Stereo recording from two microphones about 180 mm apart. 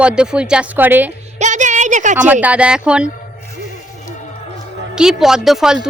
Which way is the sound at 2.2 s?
10° right (ahead or behind).